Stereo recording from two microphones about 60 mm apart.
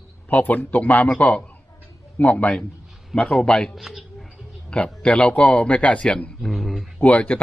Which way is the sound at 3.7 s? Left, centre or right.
Centre.